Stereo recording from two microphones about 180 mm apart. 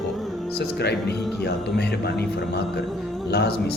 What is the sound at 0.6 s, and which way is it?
A man's voice, 65° left (ahead or behind).